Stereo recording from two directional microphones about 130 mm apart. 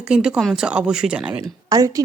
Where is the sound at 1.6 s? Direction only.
30° right (ahead or behind).